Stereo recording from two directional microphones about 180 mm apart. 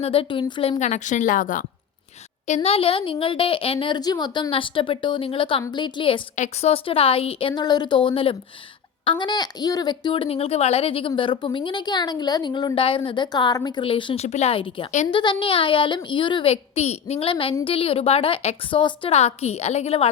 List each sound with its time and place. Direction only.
0.0 s a woman's voice: 30° left (ahead or behind); by 1.6 s 50° left (ahead or behind)
2.5 s a woman's voice: 35° left (ahead or behind)
6.3 s a woman's voice: 40° left (ahead or behind)